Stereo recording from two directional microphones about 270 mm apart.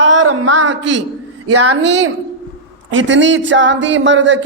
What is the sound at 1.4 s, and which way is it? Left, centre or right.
A man's voice, right.